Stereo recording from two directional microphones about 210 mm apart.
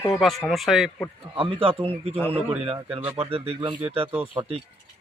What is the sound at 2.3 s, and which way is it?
Speech, 10° right (ahead or behind).